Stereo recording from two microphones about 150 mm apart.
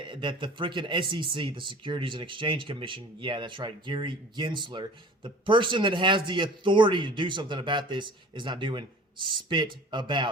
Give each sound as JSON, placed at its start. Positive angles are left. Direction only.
{"t": 0.1, "sound": "speech", "side_deg": -35}